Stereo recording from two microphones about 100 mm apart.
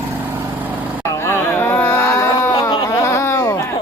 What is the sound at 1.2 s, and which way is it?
Music, 25° left (ahead or behind).